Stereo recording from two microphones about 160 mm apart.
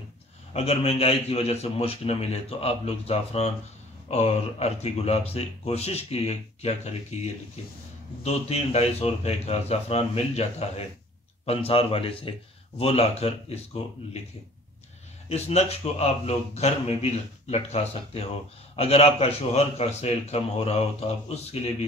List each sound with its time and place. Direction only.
0.5 s a man's voice: 40° left (ahead or behind)
8.2 s a man's voice: 40° left (ahead or behind)
15.2 s a man's voice: 40° left (ahead or behind)